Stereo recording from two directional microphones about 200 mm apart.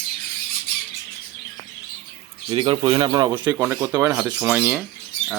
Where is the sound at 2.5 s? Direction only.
25° right (ahead or behind).